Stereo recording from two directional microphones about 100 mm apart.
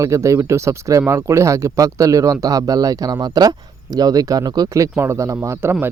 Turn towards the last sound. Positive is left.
turn(degrees=-25)  # may be behind; listen again after turning